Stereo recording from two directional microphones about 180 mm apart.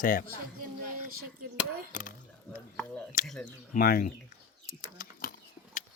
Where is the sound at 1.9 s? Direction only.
50° left (ahead or behind).